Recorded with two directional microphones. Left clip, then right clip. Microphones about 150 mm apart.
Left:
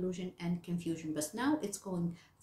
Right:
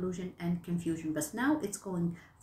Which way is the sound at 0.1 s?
20° left (ahead or behind).